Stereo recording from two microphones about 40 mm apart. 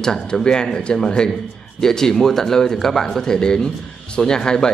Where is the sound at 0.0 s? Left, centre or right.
Centre.